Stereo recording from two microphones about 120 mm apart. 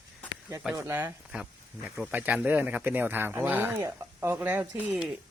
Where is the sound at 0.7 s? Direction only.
15° right (ahead or behind).